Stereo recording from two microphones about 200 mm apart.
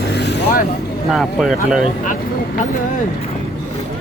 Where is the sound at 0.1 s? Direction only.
60° left (ahead or behind).